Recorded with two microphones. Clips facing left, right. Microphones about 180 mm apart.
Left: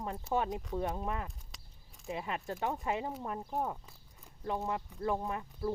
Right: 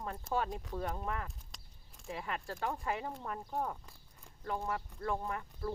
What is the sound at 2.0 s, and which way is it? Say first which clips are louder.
Speech: left 3 dB; 20° left (ahead or behind).